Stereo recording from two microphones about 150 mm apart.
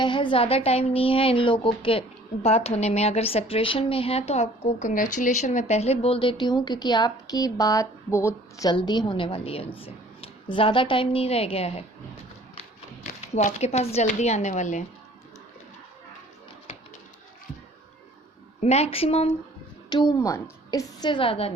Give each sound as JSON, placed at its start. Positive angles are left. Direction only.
{"t": 0.0, "sound": "a woman's voice", "side_deg": 30}
{"t": 13.3, "sound": "speech", "side_deg": 45}
{"t": 18.6, "sound": "speech", "side_deg": 45}
{"t": 19.9, "sound": "a woman's voice", "side_deg": 25}